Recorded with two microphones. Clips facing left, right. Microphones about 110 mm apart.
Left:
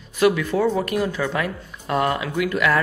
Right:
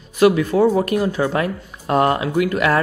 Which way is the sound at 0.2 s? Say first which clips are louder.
Right 4 dB; 35° right (ahead or behind).